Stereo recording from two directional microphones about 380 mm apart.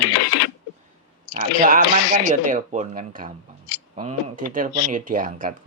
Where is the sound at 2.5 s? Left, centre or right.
Centre.